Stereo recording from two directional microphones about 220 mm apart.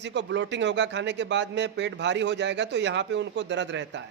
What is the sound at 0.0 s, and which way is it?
A man's voice, 55° right (ahead or behind).